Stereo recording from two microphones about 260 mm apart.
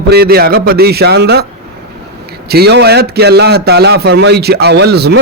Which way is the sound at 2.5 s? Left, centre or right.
Right.